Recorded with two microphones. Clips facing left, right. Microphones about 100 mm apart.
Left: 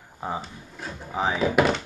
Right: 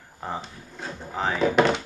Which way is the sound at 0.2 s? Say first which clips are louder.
Left 2 dB; 5° left (ahead or behind).